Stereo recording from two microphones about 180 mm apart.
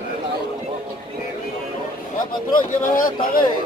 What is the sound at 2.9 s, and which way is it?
Speech, 50° left (ahead or behind).